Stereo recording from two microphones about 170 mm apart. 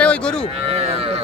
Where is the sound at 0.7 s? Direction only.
35° right (ahead or behind).